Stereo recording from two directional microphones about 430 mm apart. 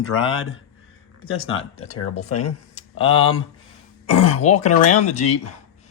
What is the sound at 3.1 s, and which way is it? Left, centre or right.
Speech, left.